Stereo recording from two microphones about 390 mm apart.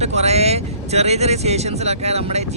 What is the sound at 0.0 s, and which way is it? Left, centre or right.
Speech, centre.